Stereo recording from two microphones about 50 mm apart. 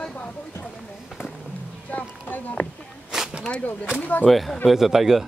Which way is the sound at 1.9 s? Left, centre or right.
Left.